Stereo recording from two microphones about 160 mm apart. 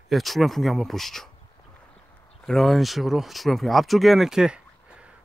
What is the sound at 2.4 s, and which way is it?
Speech, centre (ahead or behind).